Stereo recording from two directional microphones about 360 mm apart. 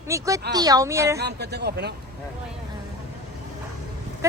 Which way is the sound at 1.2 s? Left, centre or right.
Right.